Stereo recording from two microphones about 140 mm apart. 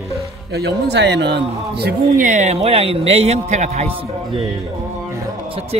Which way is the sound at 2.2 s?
60° right (ahead or behind).